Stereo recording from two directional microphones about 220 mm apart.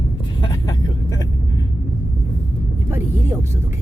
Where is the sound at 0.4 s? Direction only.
20° left (ahead or behind).